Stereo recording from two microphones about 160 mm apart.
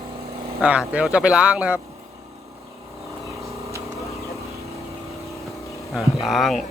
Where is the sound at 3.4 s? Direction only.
20° right (ahead or behind).